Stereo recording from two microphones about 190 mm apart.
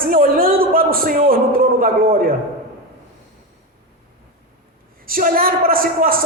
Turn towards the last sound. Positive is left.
turn(degrees=-50)  # may be behind; listen again after turning